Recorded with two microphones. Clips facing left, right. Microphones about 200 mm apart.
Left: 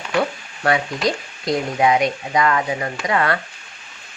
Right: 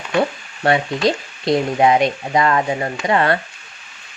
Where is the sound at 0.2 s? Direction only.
25° right (ahead or behind).